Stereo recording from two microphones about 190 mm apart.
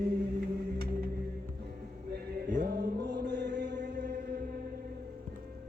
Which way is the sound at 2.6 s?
65° right (ahead or behind).